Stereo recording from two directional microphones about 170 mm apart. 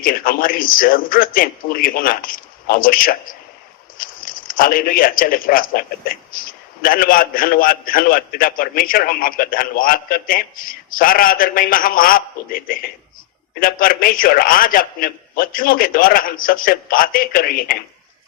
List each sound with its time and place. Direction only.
0.0 s speech: 55° left (ahead or behind)